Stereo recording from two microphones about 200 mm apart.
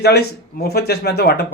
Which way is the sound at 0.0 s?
55° left (ahead or behind).